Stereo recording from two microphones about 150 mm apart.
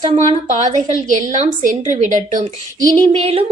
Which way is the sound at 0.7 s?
55° right (ahead or behind).